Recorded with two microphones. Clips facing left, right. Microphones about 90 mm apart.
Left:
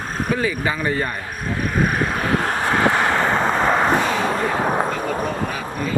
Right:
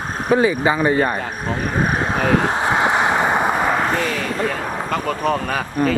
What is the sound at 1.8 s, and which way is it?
Vehicle, 20° right (ahead or behind).